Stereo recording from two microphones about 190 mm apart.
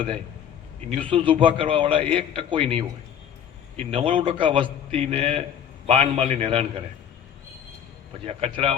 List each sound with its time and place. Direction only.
1.1 s a man's voice: 25° right (ahead or behind)
8.2 s a man's voice: 30° right (ahead or behind)